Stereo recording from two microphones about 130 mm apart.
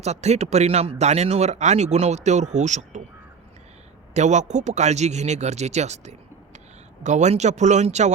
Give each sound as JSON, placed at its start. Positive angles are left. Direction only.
{"t": 0.0, "sound": "speech", "side_deg": -55}
{"t": 4.1, "sound": "speech", "side_deg": -65}